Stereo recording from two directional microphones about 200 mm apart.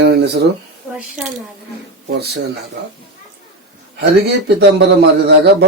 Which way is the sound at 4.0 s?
55° right (ahead or behind).